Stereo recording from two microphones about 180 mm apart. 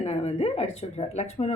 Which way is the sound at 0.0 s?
35° left (ahead or behind).